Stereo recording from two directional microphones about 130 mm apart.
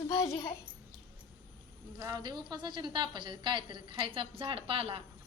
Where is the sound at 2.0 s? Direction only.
30° right (ahead or behind); by 5.0 s 45° right (ahead or behind).